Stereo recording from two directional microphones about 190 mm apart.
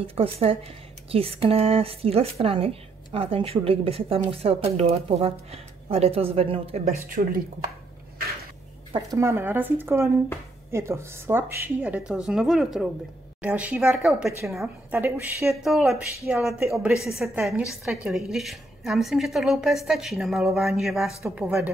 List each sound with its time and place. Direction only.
0.0 s a woman's voice: 30° right (ahead or behind); by 7.4 s 50° right (ahead or behind)
8.9 s a woman's voice: 15° right (ahead or behind)
21.2 s a woman's voice: 15° right (ahead or behind)